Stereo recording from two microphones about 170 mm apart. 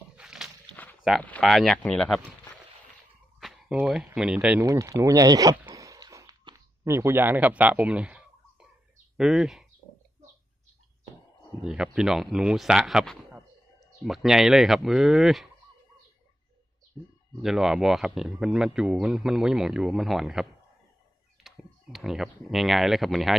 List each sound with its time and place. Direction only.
0.2 s a sound: 5° right (ahead or behind)
1.2 s speech: 5° left (ahead or behind)
3.3 s a sound: centre (ahead or behind)
3.7 s speech: 5° right (ahead or behind)
4.6 s speech: 20° right (ahead or behind)
5.7 s a sound: 20° right (ahead or behind)
9.1 s speech: 5° right (ahead or behind)
11.6 s speech: 5° right (ahead or behind)
17.4 s speech: centre (ahead or behind)